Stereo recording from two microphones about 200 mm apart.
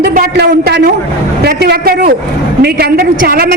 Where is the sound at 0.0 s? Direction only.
50° right (ahead or behind).